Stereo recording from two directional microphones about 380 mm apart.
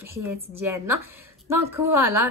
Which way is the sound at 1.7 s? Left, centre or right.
Right.